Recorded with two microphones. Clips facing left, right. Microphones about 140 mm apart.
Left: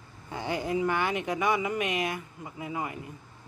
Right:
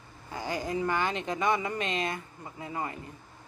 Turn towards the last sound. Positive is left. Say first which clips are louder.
# left 1 dB
turn(degrees=15)  # may be behind; listen again after turning